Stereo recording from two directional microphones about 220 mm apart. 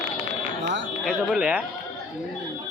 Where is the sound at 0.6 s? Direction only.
55° right (ahead or behind).